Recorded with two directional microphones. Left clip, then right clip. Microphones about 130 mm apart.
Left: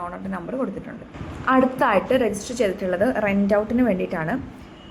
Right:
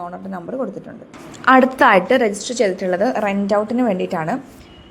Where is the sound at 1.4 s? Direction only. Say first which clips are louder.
Right 7 dB; 90° right; by 2.3 s 75° right (ahead or behind).